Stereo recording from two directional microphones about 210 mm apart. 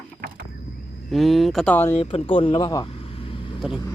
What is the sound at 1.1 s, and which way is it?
Speech, centre (ahead or behind).